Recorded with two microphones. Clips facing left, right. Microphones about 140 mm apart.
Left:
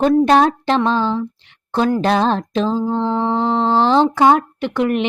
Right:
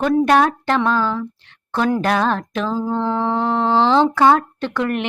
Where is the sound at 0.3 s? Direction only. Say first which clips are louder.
Left 2 dB; 25° left (ahead or behind).